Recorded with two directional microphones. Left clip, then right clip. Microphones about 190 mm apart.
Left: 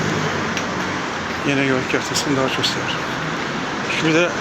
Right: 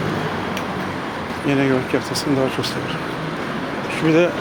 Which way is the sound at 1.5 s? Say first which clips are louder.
Right 1 dB; 20° right (ahead or behind).